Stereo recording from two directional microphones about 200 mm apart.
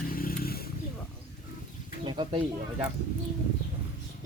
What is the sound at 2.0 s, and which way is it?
Bird, 25° right (ahead or behind).